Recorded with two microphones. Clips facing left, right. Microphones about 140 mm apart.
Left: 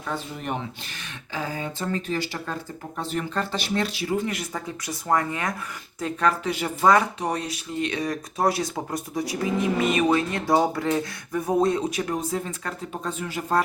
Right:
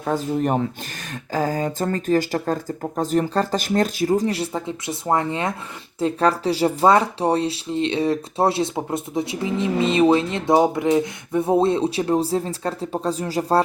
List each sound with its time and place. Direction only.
0.0 s speech: 40° right (ahead or behind)